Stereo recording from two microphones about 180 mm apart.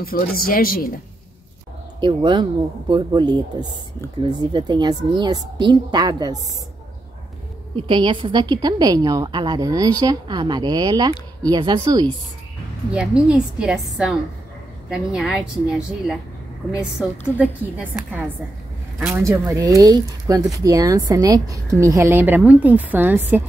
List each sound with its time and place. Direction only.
0.4 s speech: 50° left (ahead or behind)
2.0 s a woman's voice: 25° right (ahead or behind)
7.7 s a woman's voice: 25° right (ahead or behind)
12.9 s a woman's voice: 5° right (ahead or behind)